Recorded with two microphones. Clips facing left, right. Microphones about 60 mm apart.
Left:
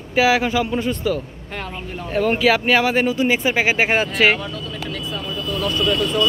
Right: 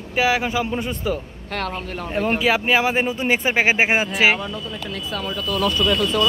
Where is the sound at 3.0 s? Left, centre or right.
Right.